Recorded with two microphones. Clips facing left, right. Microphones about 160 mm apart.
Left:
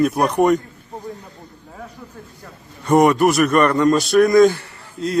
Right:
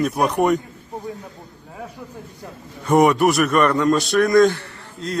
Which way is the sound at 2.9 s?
Centre (ahead or behind).